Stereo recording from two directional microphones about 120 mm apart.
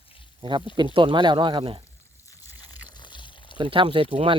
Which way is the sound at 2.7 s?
40° left (ahead or behind).